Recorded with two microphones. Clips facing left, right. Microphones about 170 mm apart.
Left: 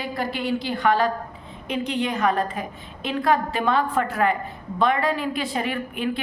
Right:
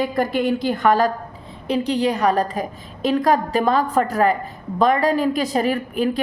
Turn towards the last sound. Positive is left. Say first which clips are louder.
# right 5 dB
turn(degrees=-40)  # may be behind; listen again after turning